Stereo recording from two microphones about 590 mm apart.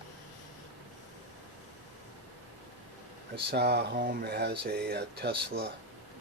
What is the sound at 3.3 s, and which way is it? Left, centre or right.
Speech, centre.